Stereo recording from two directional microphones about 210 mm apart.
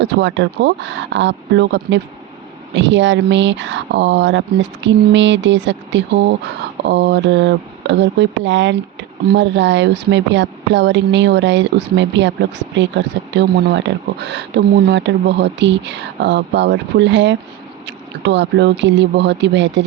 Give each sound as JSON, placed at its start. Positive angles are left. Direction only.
{"t": 0.0, "sound": "speech", "side_deg": -60}